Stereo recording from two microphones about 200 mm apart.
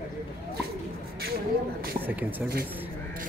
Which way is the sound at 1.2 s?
50° right (ahead or behind).